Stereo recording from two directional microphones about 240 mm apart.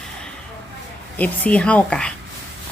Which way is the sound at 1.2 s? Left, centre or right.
Centre.